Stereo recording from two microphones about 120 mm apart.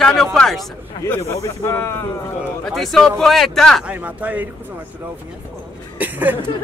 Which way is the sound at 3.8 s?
10° right (ahead or behind).